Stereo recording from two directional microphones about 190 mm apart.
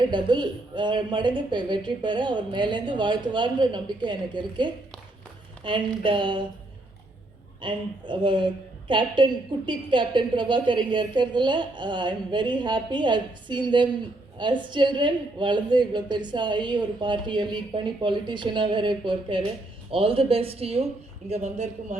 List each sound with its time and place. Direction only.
0.0 s a woman's voice: 25° right (ahead or behind)
7.6 s a woman's voice: 25° right (ahead or behind)